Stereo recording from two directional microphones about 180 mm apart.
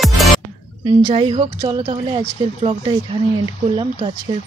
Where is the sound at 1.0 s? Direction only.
30° right (ahead or behind).